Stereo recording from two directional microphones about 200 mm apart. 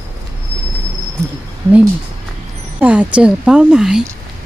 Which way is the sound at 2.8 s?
5° right (ahead or behind).